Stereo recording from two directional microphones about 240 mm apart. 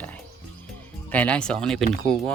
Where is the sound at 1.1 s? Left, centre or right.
Centre.